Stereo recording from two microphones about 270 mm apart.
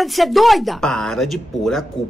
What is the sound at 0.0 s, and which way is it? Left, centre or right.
Speech, centre.